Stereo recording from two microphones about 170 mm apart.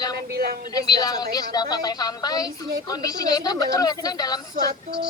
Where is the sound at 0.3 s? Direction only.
65° right (ahead or behind).